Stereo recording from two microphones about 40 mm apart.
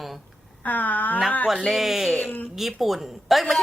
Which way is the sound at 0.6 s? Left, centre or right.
Left.